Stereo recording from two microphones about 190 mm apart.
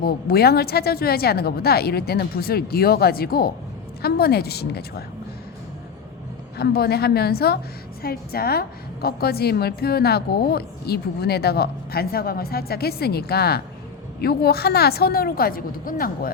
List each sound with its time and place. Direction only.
0.0 s a woman's voice: 55° left (ahead or behind)
6.6 s a woman's voice: 55° left (ahead or behind)